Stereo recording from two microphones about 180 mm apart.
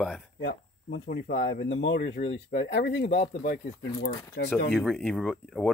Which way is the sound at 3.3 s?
55° left (ahead or behind).